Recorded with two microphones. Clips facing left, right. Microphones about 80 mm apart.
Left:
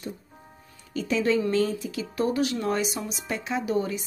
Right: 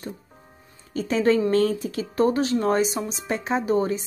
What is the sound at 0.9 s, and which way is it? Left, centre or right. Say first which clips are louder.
A woman's voice: right 4 dB; right.